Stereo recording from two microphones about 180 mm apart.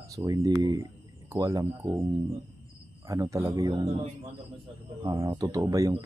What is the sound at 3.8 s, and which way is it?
Speech, 35° right (ahead or behind).